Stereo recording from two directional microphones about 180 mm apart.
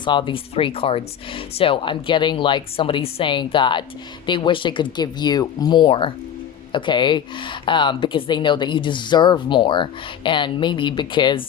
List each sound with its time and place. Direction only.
0.0 s speech: 25° left (ahead or behind)